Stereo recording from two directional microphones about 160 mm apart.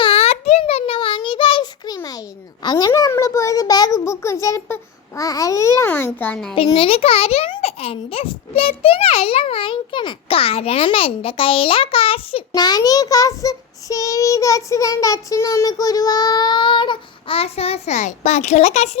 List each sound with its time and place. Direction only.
0.0 s a sound: 40° left (ahead or behind); by 6.1 s 15° left (ahead or behind)
6.1 s a child's voice: 10° left (ahead or behind)
6.7 s a child's voice: 35° left (ahead or behind)